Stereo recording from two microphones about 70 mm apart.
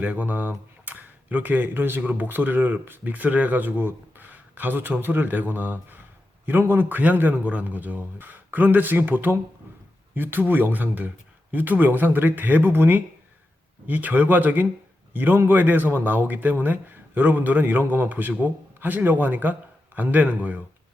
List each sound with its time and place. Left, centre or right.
0.0 s a man's voice: right